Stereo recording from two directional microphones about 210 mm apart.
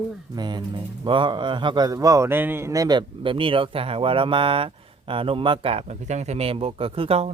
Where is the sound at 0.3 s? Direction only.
20° right (ahead or behind).